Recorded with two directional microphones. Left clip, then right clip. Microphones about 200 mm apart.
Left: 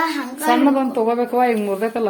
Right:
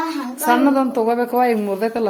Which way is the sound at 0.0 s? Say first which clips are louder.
Left 3 dB; 40° left (ahead or behind).